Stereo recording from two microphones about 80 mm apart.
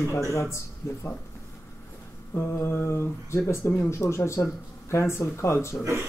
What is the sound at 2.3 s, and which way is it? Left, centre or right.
Speech, left.